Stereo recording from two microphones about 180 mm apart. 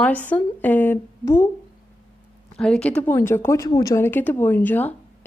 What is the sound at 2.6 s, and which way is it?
Speech, 5° left (ahead or behind).